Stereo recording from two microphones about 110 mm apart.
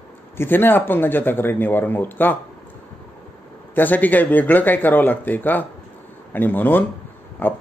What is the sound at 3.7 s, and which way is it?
Speech, 15° left (ahead or behind).